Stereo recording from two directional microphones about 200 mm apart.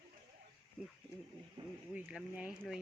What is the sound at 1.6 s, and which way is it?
Wild animals, 25° right (ahead or behind).